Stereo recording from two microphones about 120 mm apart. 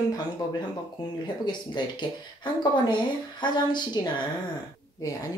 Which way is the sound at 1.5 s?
40° left (ahead or behind).